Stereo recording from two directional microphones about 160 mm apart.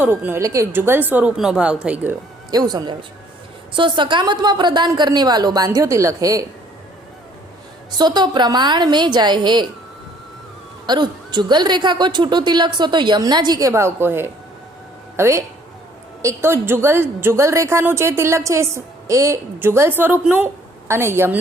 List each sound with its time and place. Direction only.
0.0 s a woman's voice: 15° right (ahead or behind)
2.5 s a woman's voice: 25° right (ahead or behind)
7.9 s a woman's voice: 25° right (ahead or behind)
10.8 s a woman's voice: 25° right (ahead or behind)